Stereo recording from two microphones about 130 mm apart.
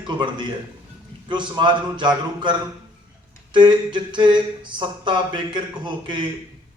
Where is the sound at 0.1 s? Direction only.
35° right (ahead or behind).